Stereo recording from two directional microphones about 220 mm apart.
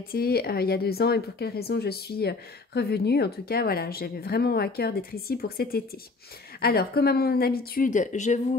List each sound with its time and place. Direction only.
0.1 s speech: 45° left (ahead or behind)